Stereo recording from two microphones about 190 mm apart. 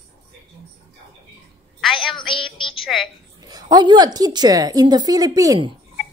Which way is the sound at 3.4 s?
20° right (ahead or behind).